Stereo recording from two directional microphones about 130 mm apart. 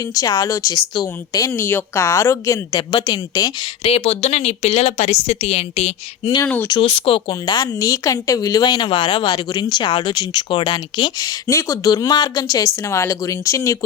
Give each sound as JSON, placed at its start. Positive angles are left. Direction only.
{"t": 0.0, "sound": "speech", "side_deg": 25}
{"t": 3.8, "sound": "speech", "side_deg": 50}
{"t": 6.4, "sound": "speech", "side_deg": 15}
{"t": 6.7, "sound": "speech", "side_deg": 45}